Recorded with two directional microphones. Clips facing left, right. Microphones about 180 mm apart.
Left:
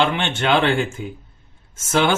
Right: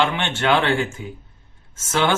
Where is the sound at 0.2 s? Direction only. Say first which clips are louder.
Left 1 dB; 20° left (ahead or behind).